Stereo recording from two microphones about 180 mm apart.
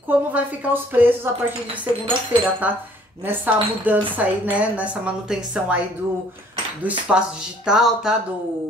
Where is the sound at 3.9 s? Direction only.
10° right (ahead or behind).